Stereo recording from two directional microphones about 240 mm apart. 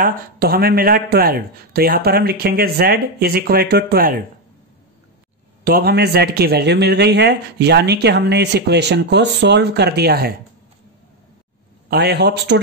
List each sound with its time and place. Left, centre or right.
0.0 s speech: right
5.6 s a man's voice: right
11.9 s a man's voice: right